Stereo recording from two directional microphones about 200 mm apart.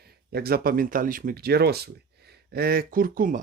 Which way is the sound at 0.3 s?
50° right (ahead or behind).